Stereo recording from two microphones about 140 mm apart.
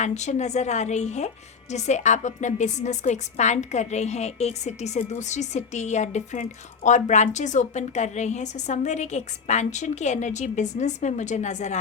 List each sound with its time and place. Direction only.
0.0 s a woman's voice: 55° left (ahead or behind)